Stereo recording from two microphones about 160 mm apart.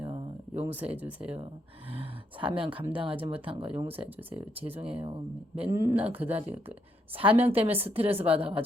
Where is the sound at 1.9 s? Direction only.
35° right (ahead or behind).